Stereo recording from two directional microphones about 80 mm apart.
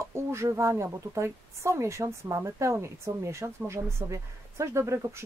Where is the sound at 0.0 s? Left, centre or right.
Right.